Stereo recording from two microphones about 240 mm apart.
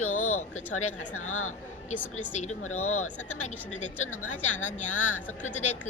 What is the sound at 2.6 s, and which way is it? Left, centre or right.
Speech, left.